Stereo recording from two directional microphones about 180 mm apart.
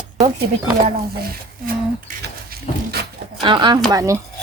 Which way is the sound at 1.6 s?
55° right (ahead or behind).